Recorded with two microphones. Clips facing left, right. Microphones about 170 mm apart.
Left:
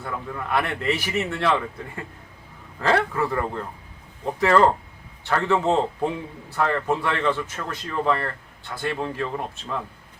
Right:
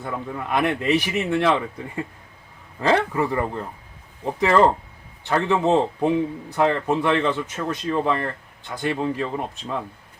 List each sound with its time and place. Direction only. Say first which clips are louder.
0.0 s speech: right 2 dB; 20° right (ahead or behind)
2.8 s speech: right 2 dB; 15° right (ahead or behind)